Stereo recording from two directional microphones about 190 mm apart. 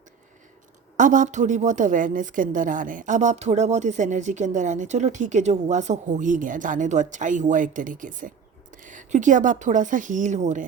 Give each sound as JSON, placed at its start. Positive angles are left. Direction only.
{"t": 0.9, "sound": "a woman's voice", "side_deg": -40}